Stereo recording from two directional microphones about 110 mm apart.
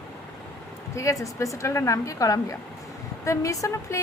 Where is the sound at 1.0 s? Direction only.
30° left (ahead or behind).